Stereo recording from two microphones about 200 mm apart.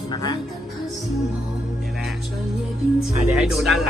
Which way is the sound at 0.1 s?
20° left (ahead or behind).